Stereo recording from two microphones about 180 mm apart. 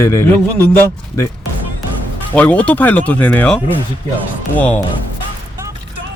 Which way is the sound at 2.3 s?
10° left (ahead or behind).